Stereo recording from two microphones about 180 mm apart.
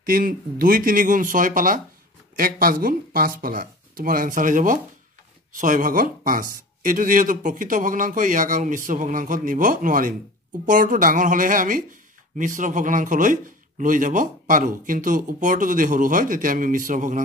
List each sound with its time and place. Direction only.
0.0 s a man's voice: 50° right (ahead or behind)